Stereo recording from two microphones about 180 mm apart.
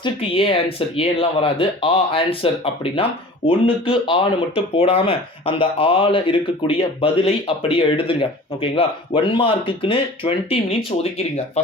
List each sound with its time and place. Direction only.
0.0 s speech: 30° left (ahead or behind)